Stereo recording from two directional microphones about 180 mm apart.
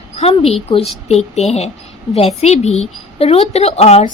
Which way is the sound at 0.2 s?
35° left (ahead or behind).